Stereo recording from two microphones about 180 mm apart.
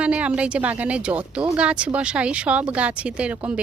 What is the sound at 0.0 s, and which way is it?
Speech, 5° right (ahead or behind).